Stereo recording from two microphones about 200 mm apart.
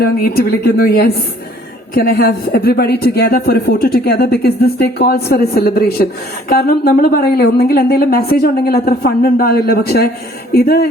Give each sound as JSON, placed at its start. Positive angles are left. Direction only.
{"t": 0.0, "sound": "a woman's voice", "side_deg": 50}